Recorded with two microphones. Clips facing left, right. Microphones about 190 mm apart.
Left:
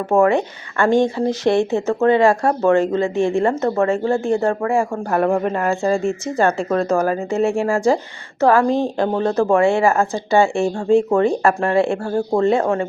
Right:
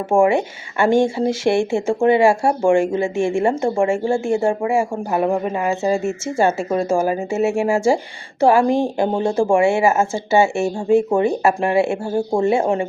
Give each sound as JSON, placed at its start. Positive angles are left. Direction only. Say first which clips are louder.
{"t": 0.2, "sound": "speech", "louder": "even", "side_deg": -10}
{"t": 9.9, "sound": "speech", "louder": "even", "side_deg": -25}
{"t": 10.3, "sound": "speech", "louder": "even", "side_deg": -5}